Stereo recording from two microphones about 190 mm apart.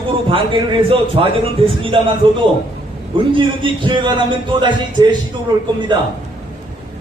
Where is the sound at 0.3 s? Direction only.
25° right (ahead or behind).